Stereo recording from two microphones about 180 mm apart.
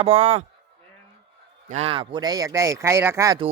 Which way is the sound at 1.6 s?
35° right (ahead or behind).